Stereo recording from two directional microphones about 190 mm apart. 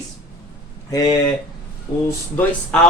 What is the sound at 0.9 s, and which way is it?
Speech, 20° left (ahead or behind).